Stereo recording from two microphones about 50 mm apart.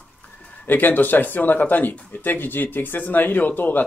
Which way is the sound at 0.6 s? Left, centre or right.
Left.